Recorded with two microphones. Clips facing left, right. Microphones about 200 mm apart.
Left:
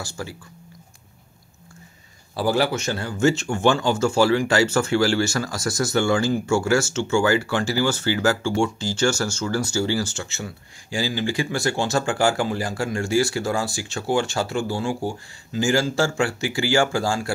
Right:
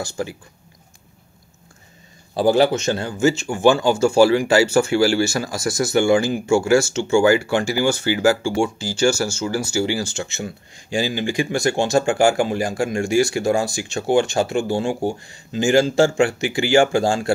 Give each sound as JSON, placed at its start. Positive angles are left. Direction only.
{"t": 0.0, "sound": "speech", "side_deg": -20}
{"t": 2.3, "sound": "speech", "side_deg": -20}
{"t": 3.2, "sound": "speech", "side_deg": -5}